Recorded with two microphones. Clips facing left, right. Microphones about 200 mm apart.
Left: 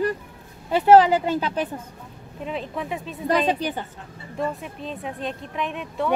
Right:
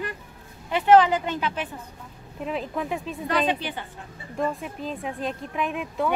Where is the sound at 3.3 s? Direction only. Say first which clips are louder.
Left 4 dB; 40° left (ahead or behind).